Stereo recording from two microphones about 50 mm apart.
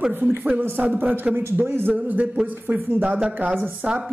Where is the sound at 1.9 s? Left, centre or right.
Right.